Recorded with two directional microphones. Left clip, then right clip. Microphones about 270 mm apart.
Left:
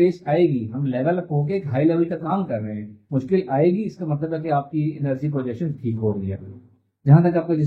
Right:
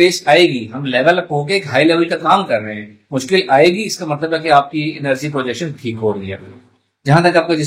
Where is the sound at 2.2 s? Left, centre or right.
Right.